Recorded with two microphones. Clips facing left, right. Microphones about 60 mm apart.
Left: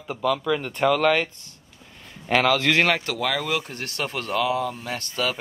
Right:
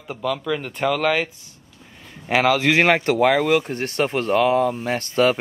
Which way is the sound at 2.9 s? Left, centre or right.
Right.